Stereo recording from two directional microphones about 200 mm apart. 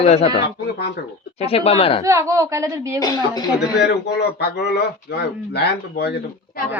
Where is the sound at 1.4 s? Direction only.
30° left (ahead or behind).